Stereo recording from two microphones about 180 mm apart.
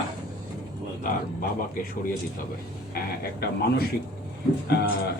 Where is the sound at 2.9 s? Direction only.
55° left (ahead or behind).